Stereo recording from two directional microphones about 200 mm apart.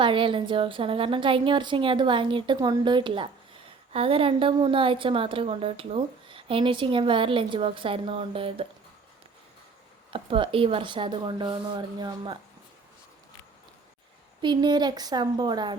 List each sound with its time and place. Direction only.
0.0 s a woman's voice: 25° right (ahead or behind)
10.1 s a woman's voice: 25° right (ahead or behind)
14.4 s a woman's voice: 20° right (ahead or behind)